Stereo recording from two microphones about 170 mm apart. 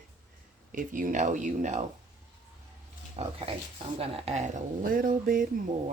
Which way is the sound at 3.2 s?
40° right (ahead or behind).